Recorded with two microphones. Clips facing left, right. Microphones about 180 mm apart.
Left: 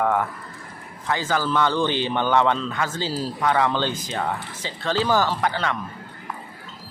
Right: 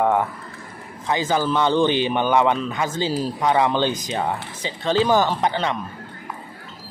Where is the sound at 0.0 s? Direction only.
20° right (ahead or behind).